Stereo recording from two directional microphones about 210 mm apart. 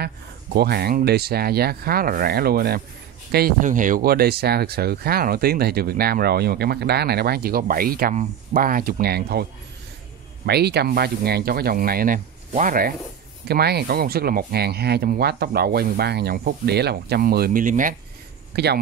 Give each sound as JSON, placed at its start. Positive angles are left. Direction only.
{"t": 0.0, "sound": "speech", "side_deg": -50}
{"t": 18.5, "sound": "speech", "side_deg": -50}